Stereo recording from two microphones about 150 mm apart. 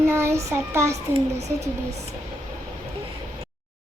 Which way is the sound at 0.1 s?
15° right (ahead or behind).